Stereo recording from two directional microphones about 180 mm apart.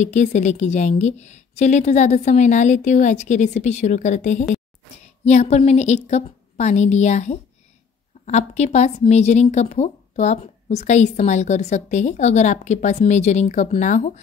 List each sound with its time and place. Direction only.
0.0 s speech: 40° left (ahead or behind)